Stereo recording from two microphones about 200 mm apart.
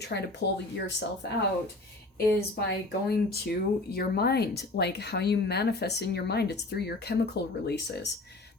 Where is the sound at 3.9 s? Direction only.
50° left (ahead or behind).